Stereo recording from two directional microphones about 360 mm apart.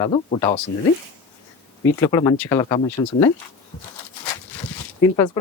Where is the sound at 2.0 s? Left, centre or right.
Centre.